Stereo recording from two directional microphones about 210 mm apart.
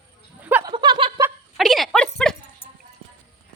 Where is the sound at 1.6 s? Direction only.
Centre (ahead or behind).